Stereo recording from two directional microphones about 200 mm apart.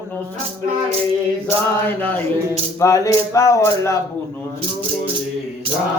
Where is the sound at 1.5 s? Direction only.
10° left (ahead or behind).